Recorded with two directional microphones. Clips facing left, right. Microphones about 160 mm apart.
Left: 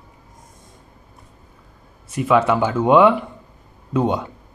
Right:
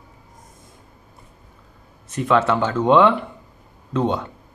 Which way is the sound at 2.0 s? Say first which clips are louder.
Left 2 dB; 10° left (ahead or behind).